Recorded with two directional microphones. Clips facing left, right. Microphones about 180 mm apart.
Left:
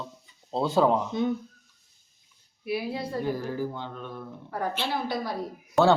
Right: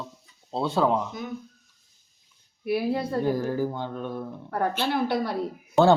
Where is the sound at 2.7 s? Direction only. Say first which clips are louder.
Right 5 dB; 55° right (ahead or behind).